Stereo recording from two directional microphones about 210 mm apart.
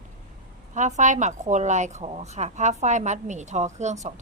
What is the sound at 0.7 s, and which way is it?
A woman's voice, 35° right (ahead or behind).